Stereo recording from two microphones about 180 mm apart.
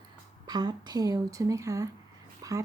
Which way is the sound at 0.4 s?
25° right (ahead or behind).